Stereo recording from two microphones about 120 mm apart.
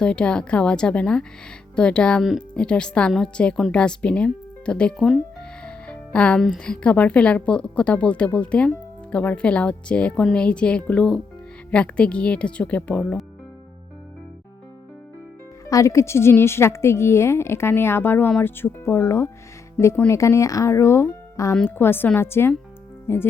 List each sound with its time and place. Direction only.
0.0 s a woman's voice: 5° left (ahead or behind)
15.7 s a woman's voice: 25° left (ahead or behind)